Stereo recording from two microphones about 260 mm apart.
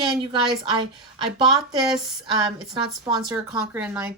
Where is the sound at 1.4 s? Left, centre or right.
Centre.